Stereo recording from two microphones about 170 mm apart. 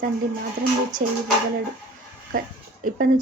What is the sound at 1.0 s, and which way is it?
Speech, 50° right (ahead or behind).